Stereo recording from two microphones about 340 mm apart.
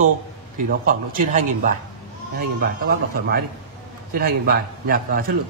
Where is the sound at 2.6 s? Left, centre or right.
Right.